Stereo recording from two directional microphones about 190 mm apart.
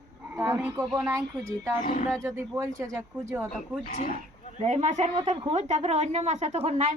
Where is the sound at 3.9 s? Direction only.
50° left (ahead or behind).